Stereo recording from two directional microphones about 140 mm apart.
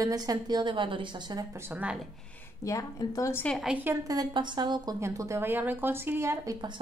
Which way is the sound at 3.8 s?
25° right (ahead or behind).